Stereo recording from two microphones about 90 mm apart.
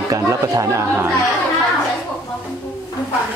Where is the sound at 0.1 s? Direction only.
35° right (ahead or behind).